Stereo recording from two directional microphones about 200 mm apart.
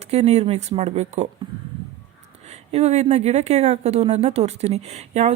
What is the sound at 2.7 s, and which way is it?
A woman's voice, 30° right (ahead or behind).